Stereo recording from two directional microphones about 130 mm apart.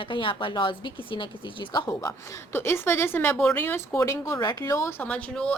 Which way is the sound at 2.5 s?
20° left (ahead or behind).